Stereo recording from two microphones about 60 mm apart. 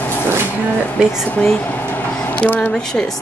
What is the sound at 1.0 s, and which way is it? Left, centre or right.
Speech, centre.